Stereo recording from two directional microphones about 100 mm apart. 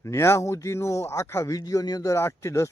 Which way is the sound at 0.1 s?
30° left (ahead or behind).